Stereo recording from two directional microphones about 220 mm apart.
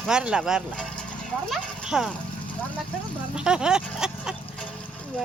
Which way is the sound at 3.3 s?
5° right (ahead or behind).